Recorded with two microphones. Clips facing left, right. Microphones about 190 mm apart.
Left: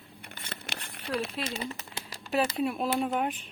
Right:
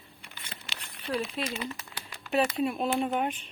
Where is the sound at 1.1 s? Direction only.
70° left (ahead or behind).